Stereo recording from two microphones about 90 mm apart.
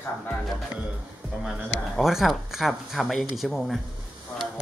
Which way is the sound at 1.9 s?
5° right (ahead or behind).